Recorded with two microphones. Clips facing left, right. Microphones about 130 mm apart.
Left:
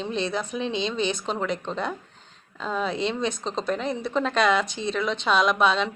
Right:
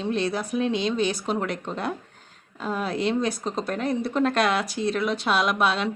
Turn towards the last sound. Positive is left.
turn(degrees=-5)  # may be behind; listen again after turning